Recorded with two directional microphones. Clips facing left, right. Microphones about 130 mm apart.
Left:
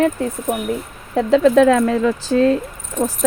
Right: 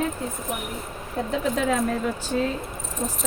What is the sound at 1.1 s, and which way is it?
Speech, 90° left.